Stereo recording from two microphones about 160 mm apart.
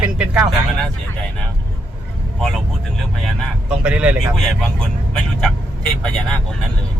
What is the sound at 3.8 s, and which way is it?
Speech, 5° right (ahead or behind).